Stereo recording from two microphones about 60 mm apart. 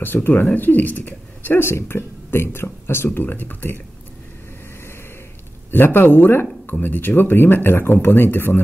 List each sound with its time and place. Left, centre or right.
0.0 s a woman's voice: left
3.2 s speech: left
5.7 s speech: left